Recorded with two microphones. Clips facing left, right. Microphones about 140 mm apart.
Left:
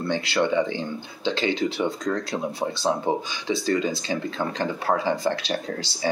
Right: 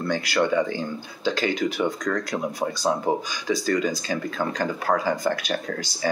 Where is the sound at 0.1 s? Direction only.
25° left (ahead or behind).